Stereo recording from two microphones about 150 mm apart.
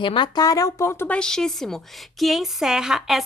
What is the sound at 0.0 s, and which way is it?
A woman's voice, 30° left (ahead or behind).